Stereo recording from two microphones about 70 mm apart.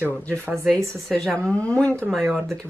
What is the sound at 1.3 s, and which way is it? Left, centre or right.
Speech, centre.